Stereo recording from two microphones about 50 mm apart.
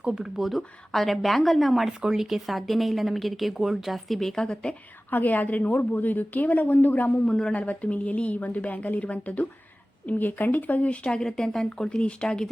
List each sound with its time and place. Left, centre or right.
0.0 s a woman's voice: centre
1.9 s speech: centre
2.2 s a woman's voice: centre
5.1 s a woman's voice: left
7.3 s speech: centre
7.5 s speech: left